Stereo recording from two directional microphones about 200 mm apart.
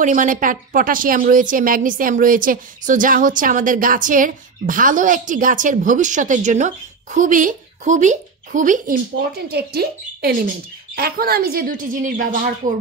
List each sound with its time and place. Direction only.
0.0 s a woman's voice: 40° right (ahead or behind)